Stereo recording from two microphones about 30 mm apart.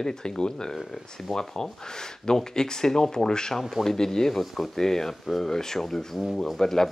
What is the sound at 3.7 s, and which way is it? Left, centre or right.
Speech, centre.